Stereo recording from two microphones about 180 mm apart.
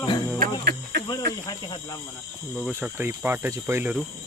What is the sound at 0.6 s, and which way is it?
Cricket, 65° right (ahead or behind).